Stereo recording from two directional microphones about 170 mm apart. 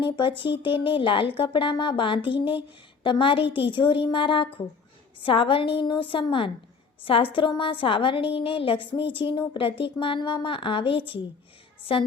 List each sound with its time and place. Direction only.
0.0 s a woman's voice: 30° left (ahead or behind)